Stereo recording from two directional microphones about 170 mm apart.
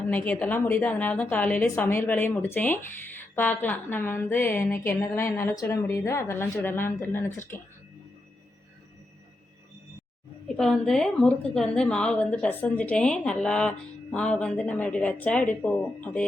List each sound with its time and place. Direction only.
0.1 s a woman's voice: 10° left (ahead or behind)
10.6 s a woman's voice: centre (ahead or behind)